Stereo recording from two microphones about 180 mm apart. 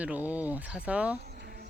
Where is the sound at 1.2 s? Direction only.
60° right (ahead or behind).